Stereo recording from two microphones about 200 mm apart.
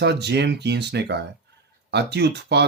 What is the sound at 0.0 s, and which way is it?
Speech, 55° right (ahead or behind).